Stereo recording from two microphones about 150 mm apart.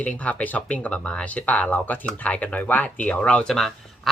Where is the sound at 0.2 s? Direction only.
10° left (ahead or behind).